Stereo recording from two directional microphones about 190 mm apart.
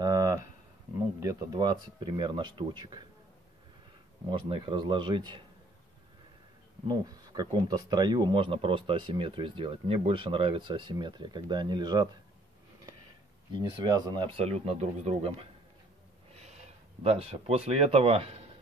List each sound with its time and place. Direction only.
0.0 s a sound: 20° right (ahead or behind)
1.2 s speech: 20° right (ahead or behind)
4.3 s speech: 25° right (ahead or behind)
6.9 s speech: 20° right (ahead or behind)
13.5 s speech: 20° right (ahead or behind)
17.0 s speech: 30° right (ahead or behind)